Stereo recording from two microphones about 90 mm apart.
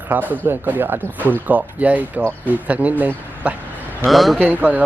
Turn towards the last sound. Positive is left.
turn(degrees=-20)  # may be behind; listen again after turning